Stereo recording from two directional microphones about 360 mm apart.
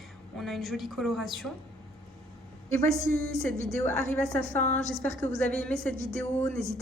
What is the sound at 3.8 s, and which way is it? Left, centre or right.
Speech, centre.